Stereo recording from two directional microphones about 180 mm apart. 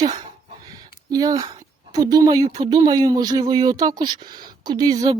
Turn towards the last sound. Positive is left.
turn(degrees=-25)  # may be behind; listen again after turning